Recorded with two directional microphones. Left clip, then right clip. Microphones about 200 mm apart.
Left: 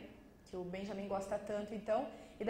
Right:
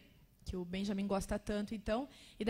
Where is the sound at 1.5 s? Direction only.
60° right (ahead or behind).